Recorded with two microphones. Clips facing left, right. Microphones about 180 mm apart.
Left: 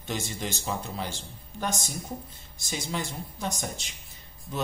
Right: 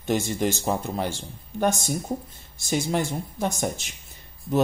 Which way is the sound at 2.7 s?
50° right (ahead or behind).